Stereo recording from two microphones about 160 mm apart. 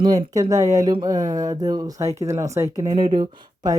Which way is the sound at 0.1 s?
25° right (ahead or behind).